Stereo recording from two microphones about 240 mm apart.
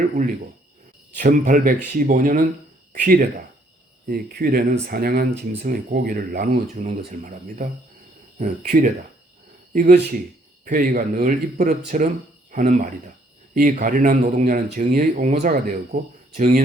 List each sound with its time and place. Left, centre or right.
1.2 s speech: right